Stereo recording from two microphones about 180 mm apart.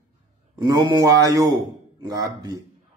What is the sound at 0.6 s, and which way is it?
Speech, 20° right (ahead or behind).